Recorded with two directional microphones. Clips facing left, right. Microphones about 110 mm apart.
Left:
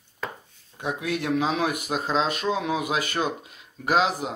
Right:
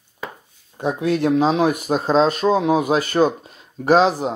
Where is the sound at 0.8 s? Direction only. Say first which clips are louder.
Right 8 dB; 35° right (ahead or behind).